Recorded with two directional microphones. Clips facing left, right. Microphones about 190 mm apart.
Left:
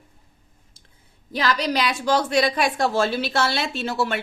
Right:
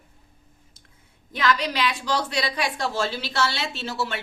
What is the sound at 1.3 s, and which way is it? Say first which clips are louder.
A woman's voice: left 1 dB; 35° left (ahead or behind).